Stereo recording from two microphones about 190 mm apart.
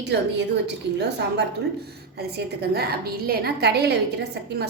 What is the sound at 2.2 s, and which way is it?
A woman's voice, 60° right (ahead or behind).